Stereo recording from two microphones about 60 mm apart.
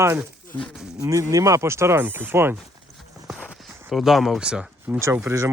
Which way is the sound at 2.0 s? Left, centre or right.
Right.